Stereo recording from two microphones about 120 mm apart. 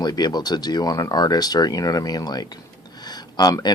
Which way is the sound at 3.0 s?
35° left (ahead or behind).